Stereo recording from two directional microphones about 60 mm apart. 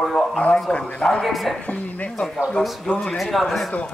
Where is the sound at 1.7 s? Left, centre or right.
Left.